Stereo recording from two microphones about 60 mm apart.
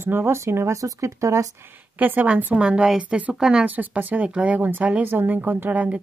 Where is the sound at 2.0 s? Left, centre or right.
Right.